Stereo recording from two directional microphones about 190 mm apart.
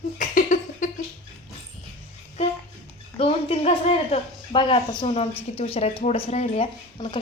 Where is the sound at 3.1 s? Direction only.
30° left (ahead or behind).